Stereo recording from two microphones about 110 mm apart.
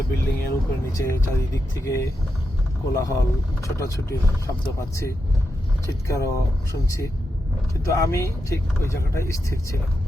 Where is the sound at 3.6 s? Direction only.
30° left (ahead or behind).